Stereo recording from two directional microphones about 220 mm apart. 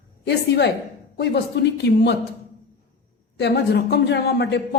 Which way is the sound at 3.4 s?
50° left (ahead or behind).